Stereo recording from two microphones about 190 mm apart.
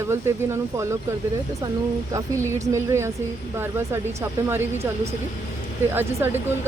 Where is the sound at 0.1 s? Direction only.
15° right (ahead or behind).